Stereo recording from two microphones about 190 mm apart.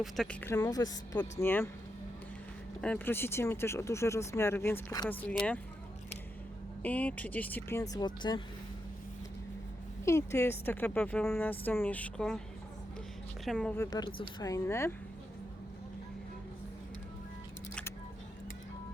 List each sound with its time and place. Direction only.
0.0 s speech: 5° left (ahead or behind)
0.6 s speech: 20° left (ahead or behind)
2.8 s speech: 10° left (ahead or behind)
6.8 s speech: 10° left (ahead or behind)
10.0 s speech: 15° left (ahead or behind)
13.4 s speech: 5° left (ahead or behind)
13.9 s speech: 20° left (ahead or behind)